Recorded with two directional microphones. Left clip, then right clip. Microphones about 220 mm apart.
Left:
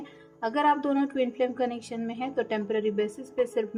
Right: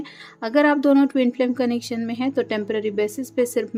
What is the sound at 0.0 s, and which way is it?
A woman's voice, 50° right (ahead or behind).